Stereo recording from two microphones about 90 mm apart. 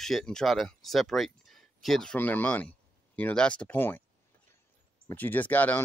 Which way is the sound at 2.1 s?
20° left (ahead or behind).